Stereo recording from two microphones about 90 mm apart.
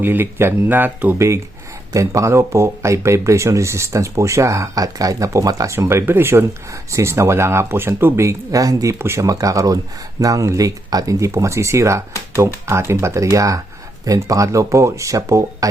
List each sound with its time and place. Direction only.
0.0 s speech: 25° right (ahead or behind)
1.9 s speech: 35° right (ahead or behind)